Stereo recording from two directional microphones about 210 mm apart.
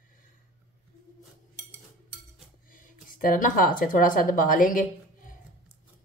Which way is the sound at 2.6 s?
40° left (ahead or behind).